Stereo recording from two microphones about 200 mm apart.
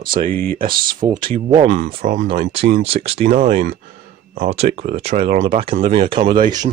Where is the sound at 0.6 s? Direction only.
45° right (ahead or behind).